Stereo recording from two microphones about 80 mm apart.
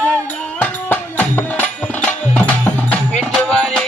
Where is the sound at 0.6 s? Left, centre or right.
Centre.